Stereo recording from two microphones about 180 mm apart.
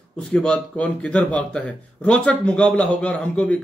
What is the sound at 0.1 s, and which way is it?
A man's voice, 5° left (ahead or behind).